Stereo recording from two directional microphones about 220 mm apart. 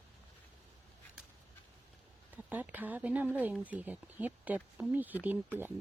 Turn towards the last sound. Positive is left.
turn(degrees=-10)  # may be behind; listen again after turning